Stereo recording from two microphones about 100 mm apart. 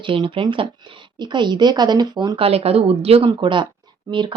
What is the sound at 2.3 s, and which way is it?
Speech, 75° right (ahead or behind).